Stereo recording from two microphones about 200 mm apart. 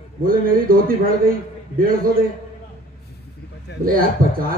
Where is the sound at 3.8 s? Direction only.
45° right (ahead or behind).